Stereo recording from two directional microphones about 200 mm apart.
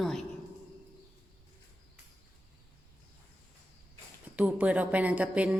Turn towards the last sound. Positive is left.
turn(degrees=-5)  # may be behind; listen again after turning